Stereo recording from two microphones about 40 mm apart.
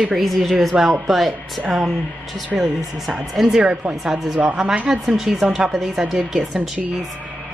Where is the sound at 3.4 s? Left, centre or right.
Right.